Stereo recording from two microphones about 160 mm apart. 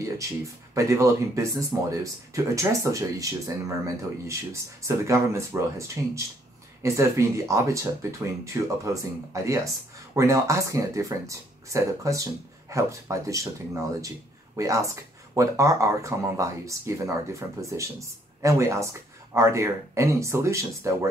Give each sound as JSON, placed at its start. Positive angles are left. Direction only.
{"t": 0.7, "sound": "speech", "side_deg": -20}
{"t": 14.6, "sound": "speech", "side_deg": -20}